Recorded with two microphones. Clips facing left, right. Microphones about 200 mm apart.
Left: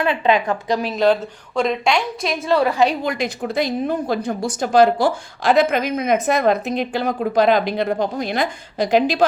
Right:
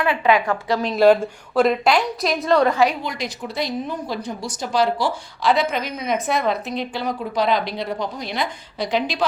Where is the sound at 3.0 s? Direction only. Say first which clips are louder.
Left 6 dB; 50° left (ahead or behind).